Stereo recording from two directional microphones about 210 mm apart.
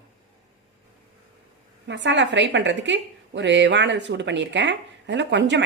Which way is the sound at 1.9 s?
55° right (ahead or behind).